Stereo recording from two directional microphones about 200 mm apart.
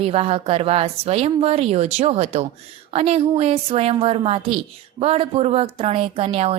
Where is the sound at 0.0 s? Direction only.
30° right (ahead or behind).